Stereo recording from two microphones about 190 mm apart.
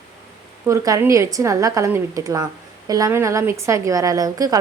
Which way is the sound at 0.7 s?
15° right (ahead or behind).